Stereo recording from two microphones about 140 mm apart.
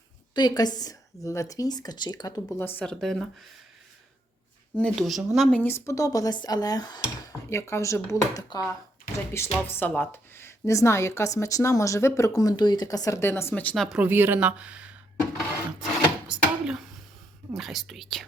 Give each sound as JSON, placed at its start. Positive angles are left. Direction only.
{"t": 0.3, "sound": "speech", "side_deg": 30}
{"t": 2.6, "sound": "speech", "side_deg": 15}
{"t": 2.8, "sound": "speech", "side_deg": 0}
{"t": 4.8, "sound": "speech", "side_deg": 0}
{"t": 9.3, "sound": "speech", "side_deg": 15}
{"t": 13.5, "sound": "speech", "side_deg": 5}
{"t": 13.8, "sound": "speech", "side_deg": -5}
{"t": 16.3, "sound": "a sound", "side_deg": -5}
{"t": 17.5, "sound": "speech", "side_deg": 0}